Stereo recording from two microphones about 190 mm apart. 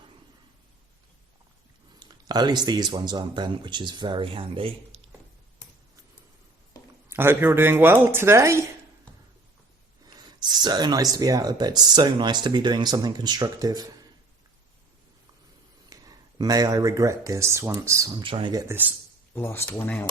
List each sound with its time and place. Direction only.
2.2 s speech: 20° right (ahead or behind)
7.1 s speech: 10° right (ahead or behind)
10.1 s speech: 20° right (ahead or behind)
15.9 s speech: 20° right (ahead or behind)
18.3 s speech: 25° right (ahead or behind)
18.7 s speech: 10° right (ahead or behind)
19.3 s speech: 10° left (ahead or behind)